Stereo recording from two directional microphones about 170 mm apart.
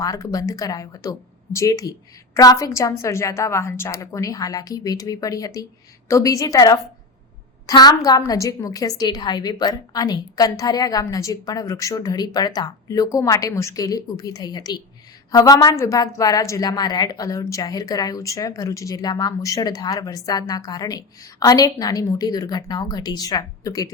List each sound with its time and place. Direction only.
0.0 s a woman's voice: 20° left (ahead or behind)